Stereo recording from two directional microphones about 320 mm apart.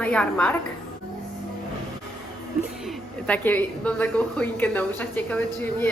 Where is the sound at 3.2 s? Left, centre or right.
Centre.